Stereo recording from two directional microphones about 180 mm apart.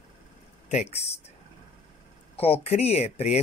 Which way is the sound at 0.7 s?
35° left (ahead or behind).